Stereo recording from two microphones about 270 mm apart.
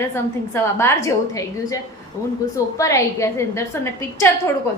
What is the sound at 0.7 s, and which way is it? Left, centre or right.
A woman's voice, centre.